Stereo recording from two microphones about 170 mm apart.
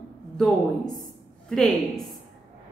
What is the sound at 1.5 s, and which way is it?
Speech, centre (ahead or behind).